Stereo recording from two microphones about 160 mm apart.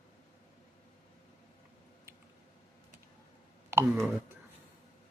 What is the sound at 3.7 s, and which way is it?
Speech, 15° right (ahead or behind).